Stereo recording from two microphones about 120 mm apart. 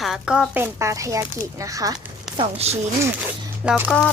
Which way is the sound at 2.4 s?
60° right (ahead or behind).